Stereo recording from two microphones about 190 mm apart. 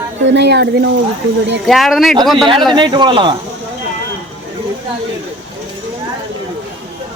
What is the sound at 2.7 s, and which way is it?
Speech, 25° right (ahead or behind).